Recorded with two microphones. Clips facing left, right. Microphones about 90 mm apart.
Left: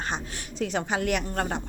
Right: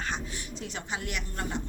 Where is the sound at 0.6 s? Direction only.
55° left (ahead or behind).